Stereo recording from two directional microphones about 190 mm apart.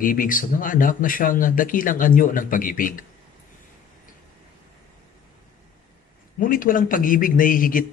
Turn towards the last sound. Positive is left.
turn(degrees=45)  # may be behind; listen again after turning